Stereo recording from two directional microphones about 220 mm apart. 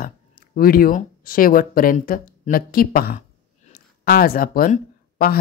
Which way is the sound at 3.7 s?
40° left (ahead or behind).